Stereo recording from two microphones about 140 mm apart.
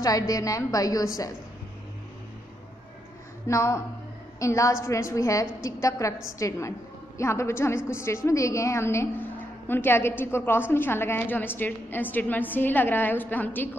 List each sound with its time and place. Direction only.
0.0 s a woman's voice: 25° left (ahead or behind)
3.4 s a woman's voice: 20° left (ahead or behind)